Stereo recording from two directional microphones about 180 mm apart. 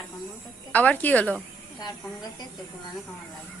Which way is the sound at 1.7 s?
20° left (ahead or behind).